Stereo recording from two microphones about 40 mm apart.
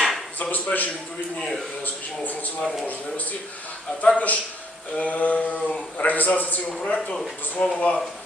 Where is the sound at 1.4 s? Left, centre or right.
Centre.